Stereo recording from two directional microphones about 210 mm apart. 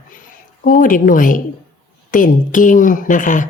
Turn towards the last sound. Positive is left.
turn(degrees=40)  # may be behind; listen again after turning